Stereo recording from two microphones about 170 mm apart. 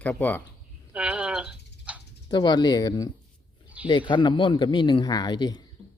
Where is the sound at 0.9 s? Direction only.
5° right (ahead or behind).